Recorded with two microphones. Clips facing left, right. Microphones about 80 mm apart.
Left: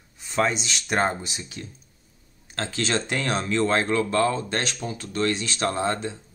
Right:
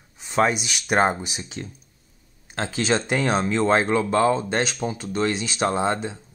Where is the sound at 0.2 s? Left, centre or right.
Centre.